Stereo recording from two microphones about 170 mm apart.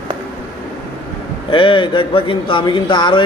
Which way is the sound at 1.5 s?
30° left (ahead or behind).